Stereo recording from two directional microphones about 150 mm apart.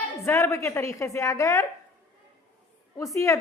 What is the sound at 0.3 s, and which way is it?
A woman's voice, 20° left (ahead or behind).